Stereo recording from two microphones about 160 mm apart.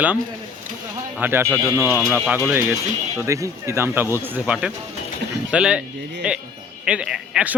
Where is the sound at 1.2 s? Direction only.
15° right (ahead or behind).